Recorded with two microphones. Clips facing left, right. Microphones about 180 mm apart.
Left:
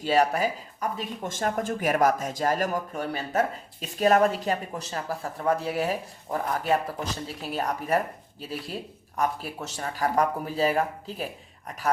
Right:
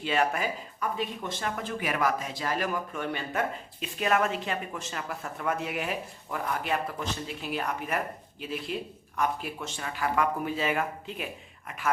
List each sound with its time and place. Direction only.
0.0 s speech: 40° left (ahead or behind)